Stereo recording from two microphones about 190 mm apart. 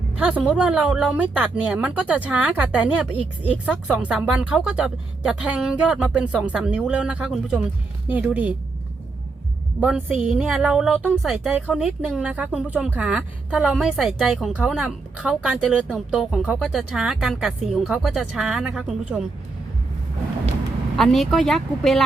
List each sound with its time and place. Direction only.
0.2 s a woman's voice: 5° right (ahead or behind)
9.8 s a woman's voice: 5° right (ahead or behind)
20.9 s a woman's voice: centre (ahead or behind)